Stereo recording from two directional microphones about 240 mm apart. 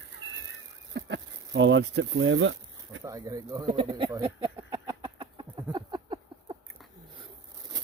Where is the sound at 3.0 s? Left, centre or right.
Centre.